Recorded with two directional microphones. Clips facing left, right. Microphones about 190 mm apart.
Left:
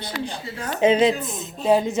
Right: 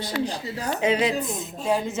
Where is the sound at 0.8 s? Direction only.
25° left (ahead or behind).